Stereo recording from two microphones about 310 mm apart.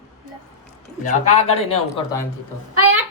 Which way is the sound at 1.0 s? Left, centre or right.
Left.